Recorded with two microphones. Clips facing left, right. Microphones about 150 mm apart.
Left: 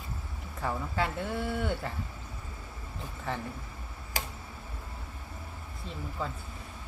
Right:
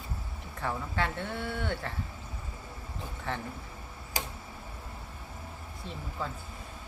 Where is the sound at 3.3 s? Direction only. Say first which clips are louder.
Left 1 dB; centre (ahead or behind).